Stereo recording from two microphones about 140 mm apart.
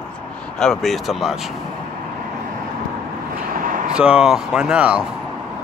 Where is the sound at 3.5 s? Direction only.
75° right (ahead or behind).